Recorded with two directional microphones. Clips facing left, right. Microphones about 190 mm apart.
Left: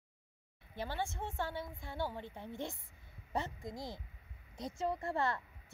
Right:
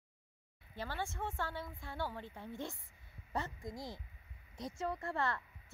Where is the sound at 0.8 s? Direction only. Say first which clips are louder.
Left 2 dB; 20° left (ahead or behind).